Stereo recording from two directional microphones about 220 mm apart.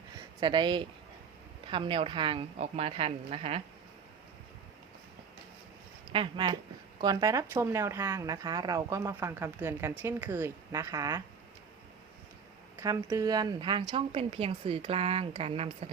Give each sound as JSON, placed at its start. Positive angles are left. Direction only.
{"t": 0.3, "sound": "a woman's voice", "side_deg": -20}
{"t": 6.1, "sound": "a woman's voice", "side_deg": -20}
{"t": 12.8, "sound": "a woman's voice", "side_deg": -15}